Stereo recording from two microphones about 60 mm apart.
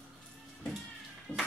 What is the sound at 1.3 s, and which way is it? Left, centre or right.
Speech, left.